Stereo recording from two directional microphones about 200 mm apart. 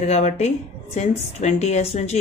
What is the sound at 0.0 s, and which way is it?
A woman's voice, 30° left (ahead or behind).